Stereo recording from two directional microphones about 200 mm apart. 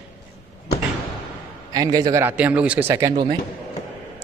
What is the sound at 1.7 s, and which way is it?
Speech, 20° right (ahead or behind).